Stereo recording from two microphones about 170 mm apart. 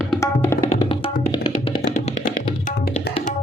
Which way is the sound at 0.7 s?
35° left (ahead or behind).